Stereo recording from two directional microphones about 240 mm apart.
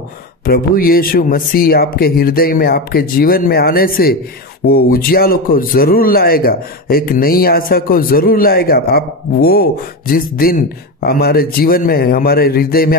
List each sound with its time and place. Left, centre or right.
0.5 s a man's voice: left